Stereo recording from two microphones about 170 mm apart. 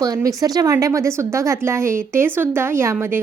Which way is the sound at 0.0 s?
20° right (ahead or behind).